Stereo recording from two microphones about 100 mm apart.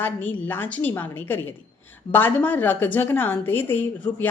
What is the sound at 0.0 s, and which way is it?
A woman's voice, 20° left (ahead or behind).